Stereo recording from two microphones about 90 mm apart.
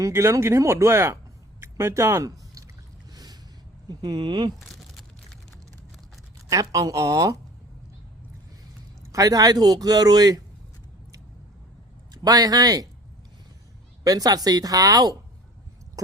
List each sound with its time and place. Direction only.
0.0 s speech: 30° right (ahead or behind)
1.6 s a sound: 30° right (ahead or behind); by 3.3 s 45° right (ahead or behind)
3.8 s speech: 50° right (ahead or behind)
4.7 s crumpling: centre (ahead or behind)
6.5 s speech: 40° right (ahead or behind)
9.1 s speech: 45° right (ahead or behind)
12.1 s speech: 45° right (ahead or behind)
14.0 s speech: 45° right (ahead or behind)